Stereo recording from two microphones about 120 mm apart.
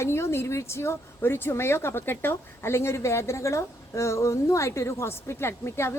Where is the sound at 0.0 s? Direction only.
20° left (ahead or behind).